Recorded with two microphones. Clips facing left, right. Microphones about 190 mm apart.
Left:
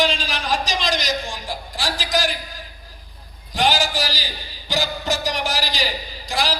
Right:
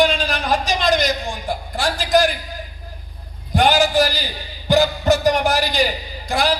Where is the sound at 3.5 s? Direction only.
60° right (ahead or behind).